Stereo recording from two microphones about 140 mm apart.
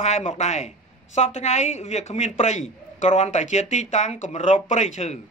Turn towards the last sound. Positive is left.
turn(degrees=50)  # may be behind; listen again after turning